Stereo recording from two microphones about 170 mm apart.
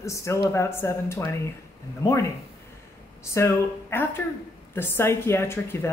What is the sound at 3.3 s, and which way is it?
A woman's voice, 15° left (ahead or behind).